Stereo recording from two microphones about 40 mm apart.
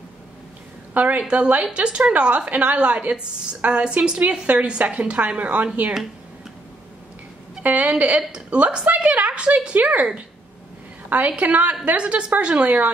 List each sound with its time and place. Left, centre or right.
0.9 s a woman's voice: right
1.2 s a woman's voice: right
7.6 s a woman's voice: right
11.1 s a woman's voice: right